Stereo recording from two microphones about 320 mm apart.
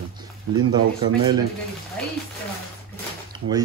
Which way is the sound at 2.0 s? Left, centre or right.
Centre.